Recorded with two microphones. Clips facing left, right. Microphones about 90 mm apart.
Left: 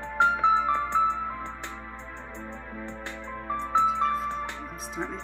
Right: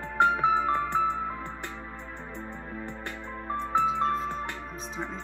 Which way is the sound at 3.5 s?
45° right (ahead or behind).